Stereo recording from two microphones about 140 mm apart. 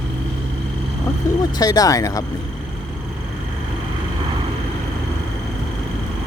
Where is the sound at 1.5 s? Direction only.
25° left (ahead or behind).